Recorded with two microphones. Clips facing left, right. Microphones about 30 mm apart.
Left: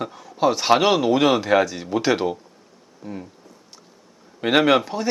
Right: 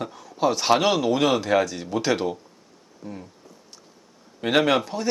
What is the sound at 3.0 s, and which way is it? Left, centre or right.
Insect, centre.